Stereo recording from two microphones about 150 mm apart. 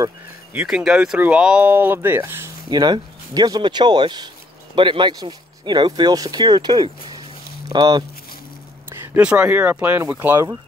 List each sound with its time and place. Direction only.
0.5 s speech: 10° right (ahead or behind)
2.7 s speech: 25° right (ahead or behind)
9.0 s speech: 10° right (ahead or behind)